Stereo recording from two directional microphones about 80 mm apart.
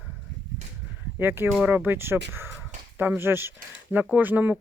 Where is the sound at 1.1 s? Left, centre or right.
Right.